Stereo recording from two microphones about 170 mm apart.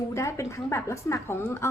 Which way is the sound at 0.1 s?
15° left (ahead or behind).